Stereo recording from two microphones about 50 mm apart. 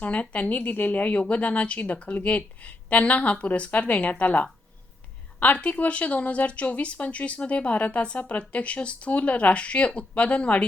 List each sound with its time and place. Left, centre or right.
0.0 s speech: left
5.5 s speech: left